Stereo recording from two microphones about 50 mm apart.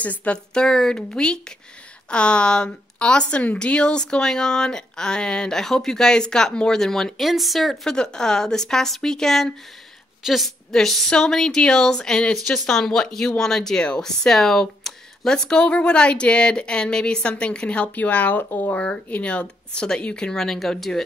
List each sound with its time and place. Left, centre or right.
0.0 s speech: left
0.6 s a woman's voice: centre
7.2 s speech: centre
7.8 s a woman's voice: centre